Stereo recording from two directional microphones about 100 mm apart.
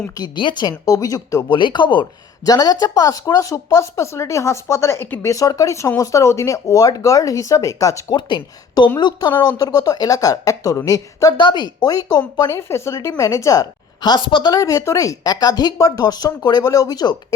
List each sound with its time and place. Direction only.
0.3 s speech: 50° left (ahead or behind); by 1.5 s 35° left (ahead or behind)
1.5 s speech: 50° left (ahead or behind)
2.4 s speech: 40° left (ahead or behind)
8.1 s speech: 50° left (ahead or behind)
11.3 s speech: 50° left (ahead or behind)
14.5 s speech: 35° left (ahead or behind)